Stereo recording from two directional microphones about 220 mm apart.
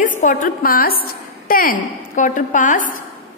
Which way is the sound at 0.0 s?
35° left (ahead or behind).